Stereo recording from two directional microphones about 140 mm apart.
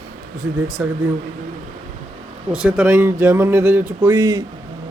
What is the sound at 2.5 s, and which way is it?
Speech, 10° right (ahead or behind).